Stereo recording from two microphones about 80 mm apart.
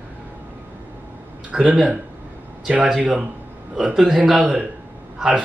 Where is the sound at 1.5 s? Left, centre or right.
Centre.